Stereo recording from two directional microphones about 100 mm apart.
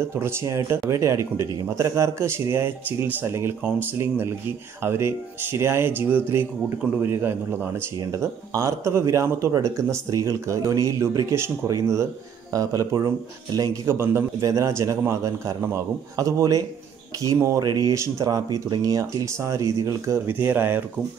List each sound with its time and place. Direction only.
0.1 s a man's voice: 25° right (ahead or behind)